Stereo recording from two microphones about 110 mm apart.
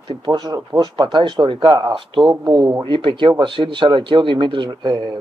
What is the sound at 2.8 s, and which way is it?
Speech, 50° right (ahead or behind).